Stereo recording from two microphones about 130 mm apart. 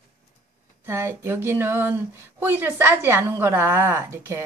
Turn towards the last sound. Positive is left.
turn(degrees=-20)  # may be behind; listen again after turning